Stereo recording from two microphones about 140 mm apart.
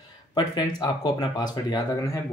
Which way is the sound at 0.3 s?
30° left (ahead or behind).